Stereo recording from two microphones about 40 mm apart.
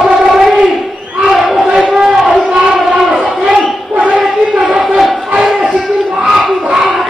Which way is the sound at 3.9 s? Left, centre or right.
Right.